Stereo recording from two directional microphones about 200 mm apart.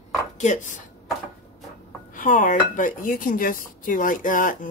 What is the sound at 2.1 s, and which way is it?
Speech, 40° left (ahead or behind).